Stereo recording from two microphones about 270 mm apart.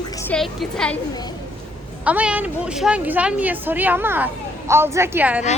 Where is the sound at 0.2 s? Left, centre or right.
Centre.